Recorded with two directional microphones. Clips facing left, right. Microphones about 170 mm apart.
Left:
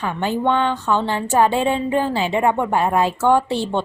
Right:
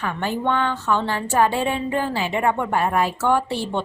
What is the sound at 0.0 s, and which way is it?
A woman's voice, 20° left (ahead or behind).